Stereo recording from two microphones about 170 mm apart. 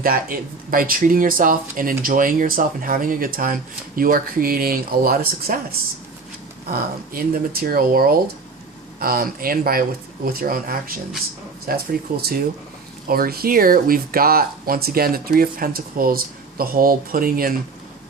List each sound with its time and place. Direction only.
0.0 s speech: 55° right (ahead or behind)
6.7 s speech: 60° right (ahead or behind)